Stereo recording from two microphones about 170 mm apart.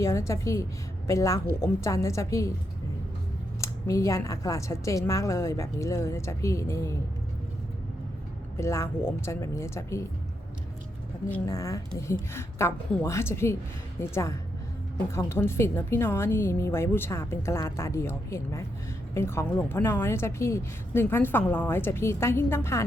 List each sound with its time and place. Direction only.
0.0 s a woman's voice: 15° left (ahead or behind)
3.6 s a woman's voice: 20° left (ahead or behind)
8.5 s a woman's voice: 15° left (ahead or behind)
11.4 s a woman's voice: 20° left (ahead or behind)